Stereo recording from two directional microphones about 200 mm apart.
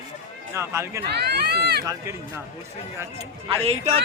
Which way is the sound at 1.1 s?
55° right (ahead or behind).